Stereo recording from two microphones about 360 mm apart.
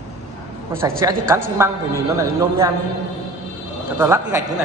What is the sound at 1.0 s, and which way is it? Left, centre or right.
Speech, centre.